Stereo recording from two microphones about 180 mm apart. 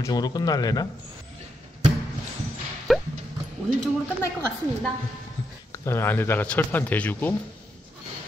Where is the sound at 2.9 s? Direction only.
Centre (ahead or behind).